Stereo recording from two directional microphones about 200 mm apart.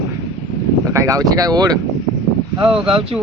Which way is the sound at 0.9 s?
15° right (ahead or behind).